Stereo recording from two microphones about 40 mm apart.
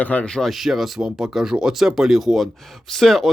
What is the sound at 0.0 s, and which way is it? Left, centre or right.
Speech, left.